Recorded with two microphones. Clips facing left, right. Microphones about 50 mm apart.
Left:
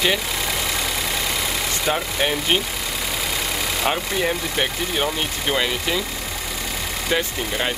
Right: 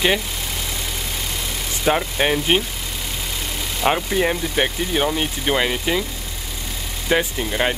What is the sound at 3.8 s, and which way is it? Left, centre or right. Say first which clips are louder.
Speech: right 5 dB; centre.